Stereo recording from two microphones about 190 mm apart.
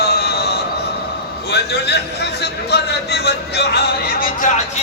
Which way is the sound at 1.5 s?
60° left (ahead or behind).